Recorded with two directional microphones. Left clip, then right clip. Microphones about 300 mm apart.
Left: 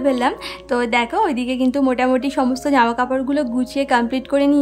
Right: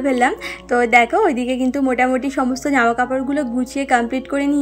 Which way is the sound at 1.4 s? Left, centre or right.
Left.